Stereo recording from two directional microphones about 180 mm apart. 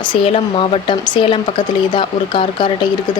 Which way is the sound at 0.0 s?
30° left (ahead or behind).